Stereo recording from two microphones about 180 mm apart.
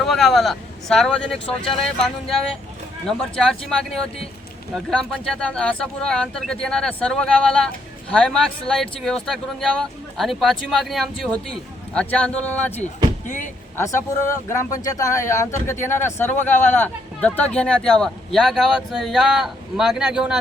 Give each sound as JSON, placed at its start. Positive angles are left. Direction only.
{"t": 0.0, "sound": "speech", "side_deg": 0}
{"t": 4.7, "sound": "speech", "side_deg": 5}